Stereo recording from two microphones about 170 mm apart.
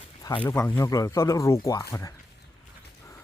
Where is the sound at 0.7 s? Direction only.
20° left (ahead or behind).